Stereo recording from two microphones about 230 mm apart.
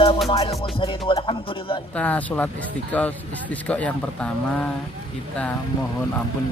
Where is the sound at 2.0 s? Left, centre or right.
Centre.